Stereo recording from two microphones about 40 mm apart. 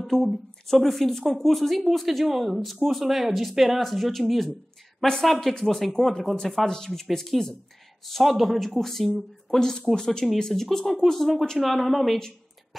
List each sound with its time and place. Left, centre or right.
0.0 s a woman's voice: centre